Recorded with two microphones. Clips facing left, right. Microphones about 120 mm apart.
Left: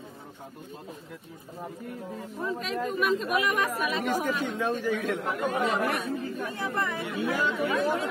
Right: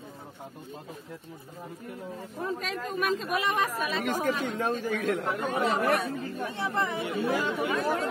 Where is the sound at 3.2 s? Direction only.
30° right (ahead or behind).